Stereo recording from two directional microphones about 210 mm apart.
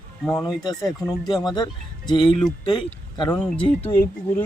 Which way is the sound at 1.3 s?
20° left (ahead or behind).